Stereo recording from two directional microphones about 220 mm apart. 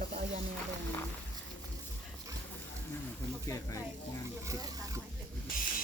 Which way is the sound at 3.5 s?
15° left (ahead or behind).